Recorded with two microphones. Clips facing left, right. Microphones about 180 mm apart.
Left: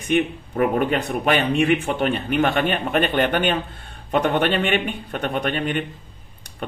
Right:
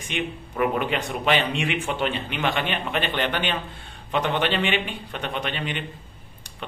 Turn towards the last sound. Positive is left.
turn(degrees=50)  # may be behind; listen again after turning